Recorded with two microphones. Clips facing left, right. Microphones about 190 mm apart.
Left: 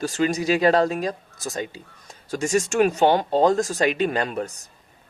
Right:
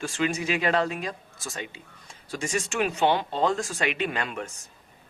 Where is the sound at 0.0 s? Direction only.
40° left (ahead or behind).